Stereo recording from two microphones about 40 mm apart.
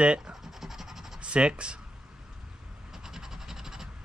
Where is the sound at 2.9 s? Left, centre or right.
Centre.